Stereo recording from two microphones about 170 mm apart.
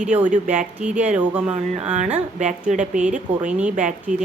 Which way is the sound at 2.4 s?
45° right (ahead or behind).